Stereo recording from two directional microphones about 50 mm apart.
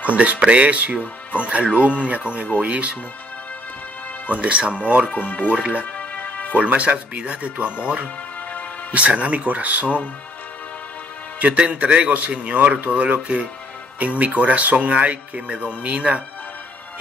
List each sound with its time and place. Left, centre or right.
0.0 s speech: right
4.3 s speech: right
5.1 s speech: left
5.5 s speech: right
5.9 s music: left
6.5 s speech: right
8.9 s speech: right
11.3 s speech: right